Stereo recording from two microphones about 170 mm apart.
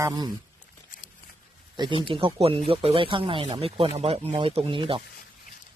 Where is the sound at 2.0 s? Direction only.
30° right (ahead or behind).